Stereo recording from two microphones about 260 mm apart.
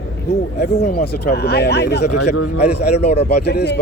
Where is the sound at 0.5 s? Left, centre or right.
Left.